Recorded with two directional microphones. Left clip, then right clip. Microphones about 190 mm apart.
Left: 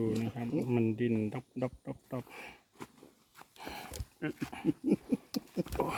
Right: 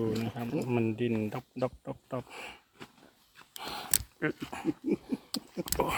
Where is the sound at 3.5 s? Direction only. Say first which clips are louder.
Right 5 dB; 5° right (ahead or behind).